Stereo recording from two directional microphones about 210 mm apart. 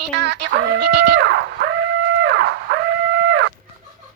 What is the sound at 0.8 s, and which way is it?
Music, 55° right (ahead or behind).